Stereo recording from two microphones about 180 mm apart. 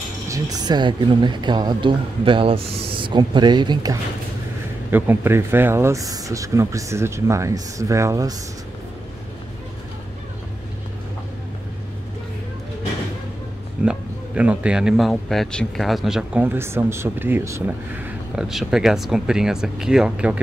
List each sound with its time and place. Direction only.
0.3 s speech: 20° right (ahead or behind)
4.9 s speech: 10° right (ahead or behind)
13.8 s speech: 5° right (ahead or behind)